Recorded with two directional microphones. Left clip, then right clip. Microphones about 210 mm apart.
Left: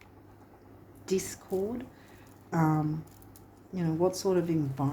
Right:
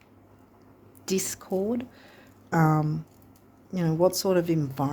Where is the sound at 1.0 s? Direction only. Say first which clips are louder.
Right 2 dB; 55° right (ahead or behind).